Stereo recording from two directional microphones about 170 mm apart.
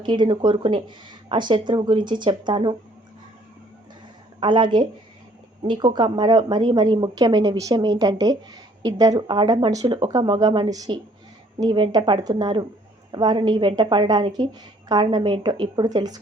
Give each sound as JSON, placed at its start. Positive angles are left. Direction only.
{"t": 0.0, "sound": "speech", "side_deg": -25}
{"t": 4.4, "sound": "speech", "side_deg": -30}